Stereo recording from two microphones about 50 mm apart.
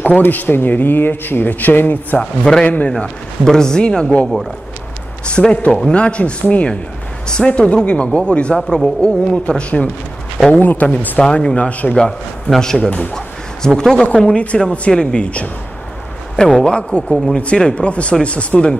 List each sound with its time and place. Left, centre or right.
0.2 s speech: left
2.1 s a man's voice: centre
2.6 s speech: left
3.4 s a man's voice: centre
5.4 s a man's voice: centre
5.9 s speech: left
7.2 s a man's voice: centre
8.6 s speech: centre
9.0 s speech: centre
10.5 s speech: left
11.1 s speech: centre
11.9 s a man's voice: centre